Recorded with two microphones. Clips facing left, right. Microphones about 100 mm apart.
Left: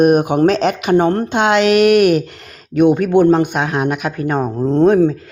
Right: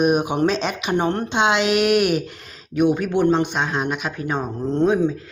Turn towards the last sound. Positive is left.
turn(degrees=60)  # may be behind; listen again after turning